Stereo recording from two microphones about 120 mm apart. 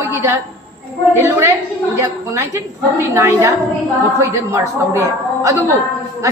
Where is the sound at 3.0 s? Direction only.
25° right (ahead or behind).